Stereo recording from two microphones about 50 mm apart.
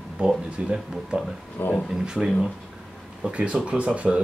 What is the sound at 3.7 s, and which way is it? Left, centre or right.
Speech, right.